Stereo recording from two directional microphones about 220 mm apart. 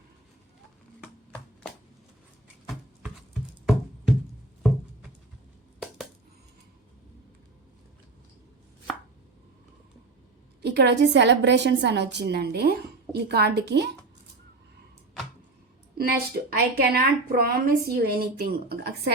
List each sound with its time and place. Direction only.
10.6 s a woman's voice: 50° right (ahead or behind)
16.0 s a woman's voice: 45° right (ahead or behind)